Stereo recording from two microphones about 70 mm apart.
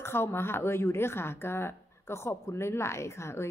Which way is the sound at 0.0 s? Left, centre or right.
Left.